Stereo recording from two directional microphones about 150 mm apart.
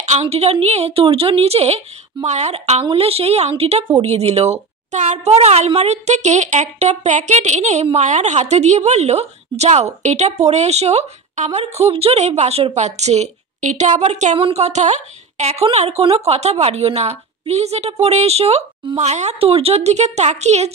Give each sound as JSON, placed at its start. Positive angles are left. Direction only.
{"t": 0.0, "sound": "a woman's voice", "side_deg": -45}